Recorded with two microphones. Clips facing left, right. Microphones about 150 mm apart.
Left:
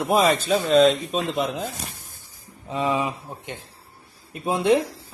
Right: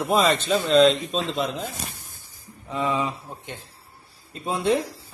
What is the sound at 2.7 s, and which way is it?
Speech, 20° left (ahead or behind).